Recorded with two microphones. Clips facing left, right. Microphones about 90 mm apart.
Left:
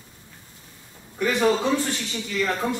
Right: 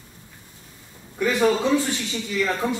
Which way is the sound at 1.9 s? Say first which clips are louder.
Right 2 dB; 15° right (ahead or behind).